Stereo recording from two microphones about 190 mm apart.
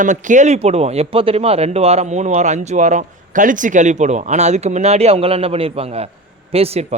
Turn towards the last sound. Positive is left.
turn(degrees=-35)  # may be behind; listen again after turning